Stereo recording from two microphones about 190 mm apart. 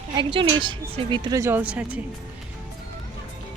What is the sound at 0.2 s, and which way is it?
A woman's voice, 25° right (ahead or behind).